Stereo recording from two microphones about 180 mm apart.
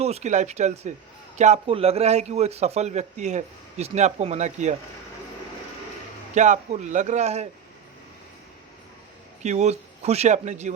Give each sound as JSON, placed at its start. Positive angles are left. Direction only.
{"t": 0.0, "sound": "a man's voice", "side_deg": -40}
{"t": 6.3, "sound": "a man's voice", "side_deg": -40}
{"t": 9.4, "sound": "a man's voice", "side_deg": -40}